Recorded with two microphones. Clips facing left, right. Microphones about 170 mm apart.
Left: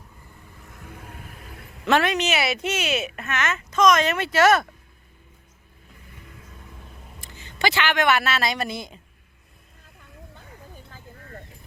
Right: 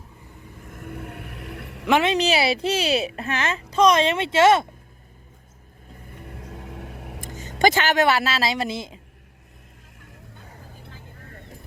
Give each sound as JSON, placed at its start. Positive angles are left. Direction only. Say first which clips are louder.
{"t": 0.7, "sound": "vehicle", "louder": "right 7 dB", "side_deg": -55}
{"t": 1.9, "sound": "a woman's voice", "louder": "right 1 dB", "side_deg": -15}
{"t": 2.1, "sound": "a child's voice", "louder": "right 3 dB", "side_deg": -30}
{"t": 5.9, "sound": "vehicle", "louder": "right 7 dB", "side_deg": -50}
{"t": 7.2, "sound": "vehicle", "louder": "right 9 dB", "side_deg": -45}
{"t": 7.6, "sound": "speech", "louder": "right 4 dB", "side_deg": -45}